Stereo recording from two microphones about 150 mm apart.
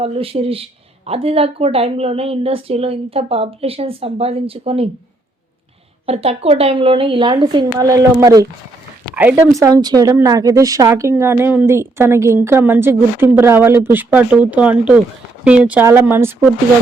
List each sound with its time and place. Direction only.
0.0 s speech: 40° right (ahead or behind)
6.1 s speech: 40° right (ahead or behind)
7.5 s speech: 20° right (ahead or behind)
9.2 s a woman's voice: 10° right (ahead or behind)
9.6 s a woman's voice: 25° right (ahead or behind)